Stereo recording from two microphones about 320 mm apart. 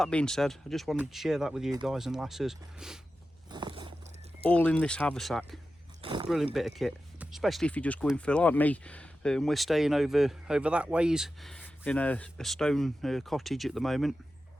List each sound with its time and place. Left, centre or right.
0.0 s speech: centre
3.5 s vehicle: centre
4.4 s speech: centre
6.0 s zipper: centre
6.2 s speech: centre